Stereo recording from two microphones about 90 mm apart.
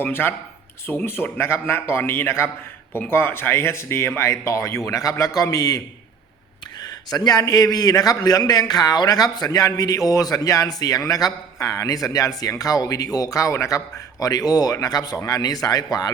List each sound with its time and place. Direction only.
0.0 s a man's voice: 20° left (ahead or behind); by 5.8 s 40° left (ahead or behind)
7.1 s a man's voice: 45° left (ahead or behind)